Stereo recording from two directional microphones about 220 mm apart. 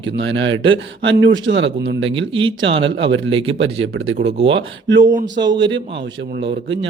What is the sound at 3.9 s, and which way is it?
Speech, 65° right (ahead or behind).